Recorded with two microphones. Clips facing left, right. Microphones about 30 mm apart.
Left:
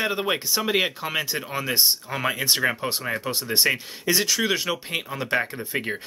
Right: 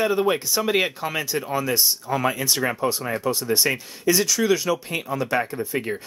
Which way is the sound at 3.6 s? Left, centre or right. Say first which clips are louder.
Right 1 dB; left.